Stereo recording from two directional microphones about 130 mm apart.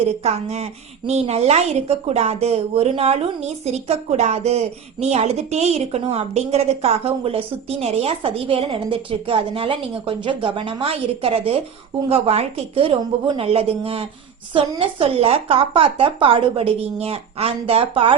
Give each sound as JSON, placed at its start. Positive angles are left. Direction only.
{"t": 0.2, "sound": "a woman's voice", "side_deg": -55}